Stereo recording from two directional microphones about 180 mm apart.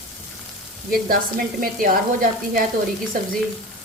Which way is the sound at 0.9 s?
55° right (ahead or behind).